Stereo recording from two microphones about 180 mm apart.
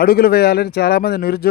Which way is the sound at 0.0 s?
60° left (ahead or behind).